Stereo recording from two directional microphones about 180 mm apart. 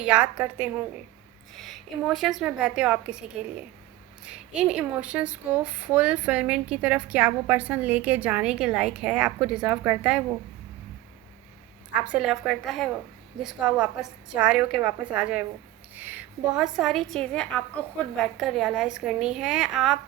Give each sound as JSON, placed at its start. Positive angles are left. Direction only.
{"t": 0.0, "sound": "speech", "side_deg": -5}
{"t": 1.5, "sound": "a woman's voice", "side_deg": 0}
{"t": 4.3, "sound": "speech", "side_deg": -5}
{"t": 11.9, "sound": "a woman's voice", "side_deg": -5}